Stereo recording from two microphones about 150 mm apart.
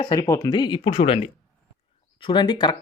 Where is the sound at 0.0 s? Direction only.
25° left (ahead or behind).